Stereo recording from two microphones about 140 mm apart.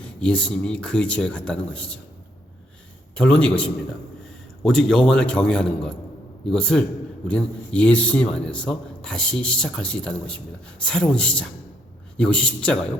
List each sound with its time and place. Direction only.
0.0 s a man's voice: 10° left (ahead or behind)
3.2 s a man's voice: 5° left (ahead or behind)